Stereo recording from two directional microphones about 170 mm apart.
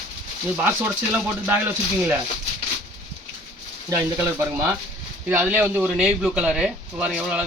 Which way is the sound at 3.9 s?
15° right (ahead or behind).